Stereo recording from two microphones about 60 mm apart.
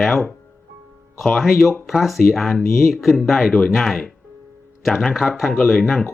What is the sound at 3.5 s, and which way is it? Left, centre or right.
Speech, centre.